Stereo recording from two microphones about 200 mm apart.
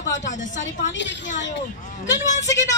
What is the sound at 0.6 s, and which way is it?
Speech, 65° left (ahead or behind).